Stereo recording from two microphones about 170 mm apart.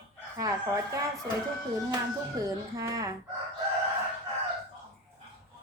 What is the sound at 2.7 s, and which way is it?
Speech, 20° right (ahead or behind).